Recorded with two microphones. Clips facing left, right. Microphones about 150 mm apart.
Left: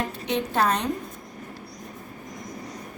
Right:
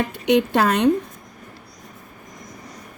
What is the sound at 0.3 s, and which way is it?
Speech, 75° right (ahead or behind).